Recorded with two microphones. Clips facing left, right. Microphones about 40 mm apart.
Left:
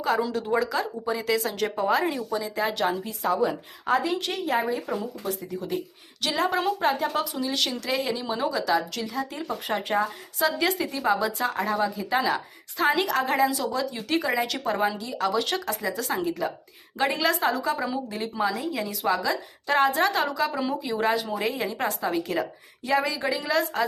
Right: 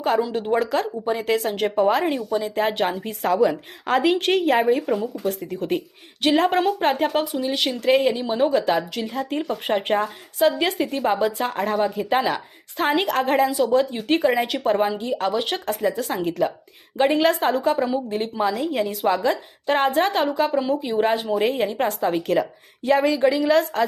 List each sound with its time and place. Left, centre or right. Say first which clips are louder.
0.3 s speech: right 4 dB; right
3.2 s a woman's voice: right 5 dB; right
4.2 s speech: right 8 dB; right
5.2 s speech: right 5 dB; right
6.2 s speech: right 6 dB; right
7.3 s speech: right 4 dB; right
7.7 s speech: right 9 dB; right
10.3 s speech: right 5 dB; right
20.5 s speech: right 6 dB; centre
20.8 s speech: right 4 dB; right